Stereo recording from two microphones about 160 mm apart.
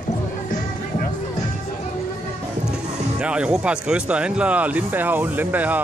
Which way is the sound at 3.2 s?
5° right (ahead or behind).